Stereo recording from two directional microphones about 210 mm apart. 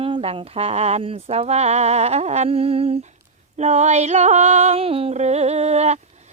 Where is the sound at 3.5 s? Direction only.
35° right (ahead or behind).